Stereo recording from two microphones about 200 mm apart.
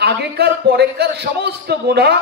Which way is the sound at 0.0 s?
55° right (ahead or behind).